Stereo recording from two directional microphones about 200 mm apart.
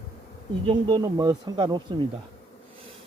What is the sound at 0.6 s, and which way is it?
Speech, 20° right (ahead or behind).